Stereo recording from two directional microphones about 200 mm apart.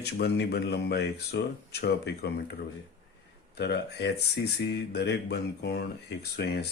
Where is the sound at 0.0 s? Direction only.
55° left (ahead or behind).